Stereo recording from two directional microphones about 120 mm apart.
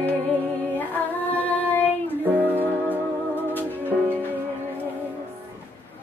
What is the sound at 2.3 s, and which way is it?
Music, 15° right (ahead or behind).